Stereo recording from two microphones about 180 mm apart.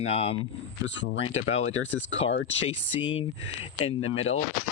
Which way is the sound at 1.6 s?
90° left.